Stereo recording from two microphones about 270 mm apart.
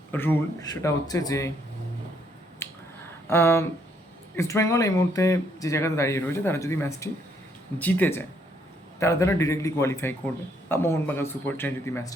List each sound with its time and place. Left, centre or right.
0.1 s a man's voice: centre
2.6 s finger snapping: centre
3.2 s a man's voice: centre